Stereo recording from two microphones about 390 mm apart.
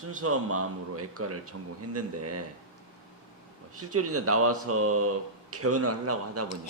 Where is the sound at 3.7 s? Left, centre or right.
Right.